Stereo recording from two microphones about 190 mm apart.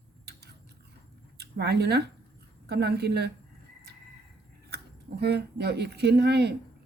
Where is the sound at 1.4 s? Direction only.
60° right (ahead or behind).